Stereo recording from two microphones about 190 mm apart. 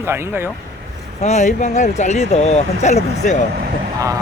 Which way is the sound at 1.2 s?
40° left (ahead or behind).